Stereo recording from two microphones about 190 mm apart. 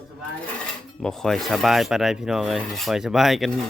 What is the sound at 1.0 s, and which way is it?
Speech, centre (ahead or behind).